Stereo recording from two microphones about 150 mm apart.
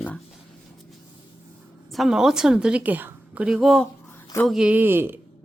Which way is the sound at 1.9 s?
Centre (ahead or behind).